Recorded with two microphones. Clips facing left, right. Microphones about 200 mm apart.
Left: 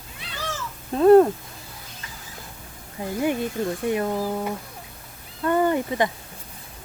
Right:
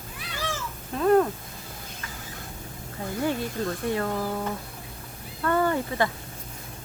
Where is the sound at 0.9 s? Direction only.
35° left (ahead or behind).